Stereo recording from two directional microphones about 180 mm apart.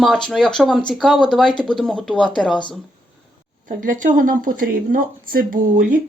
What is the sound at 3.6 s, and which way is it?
Speech, 45° right (ahead or behind).